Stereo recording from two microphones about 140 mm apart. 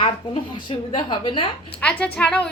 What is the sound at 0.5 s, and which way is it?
Speech, 35° left (ahead or behind).